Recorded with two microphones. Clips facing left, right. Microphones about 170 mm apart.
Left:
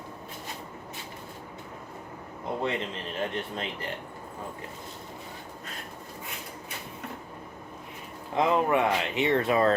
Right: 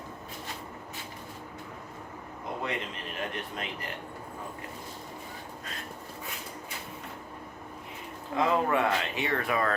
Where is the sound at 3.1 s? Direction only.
30° left (ahead or behind).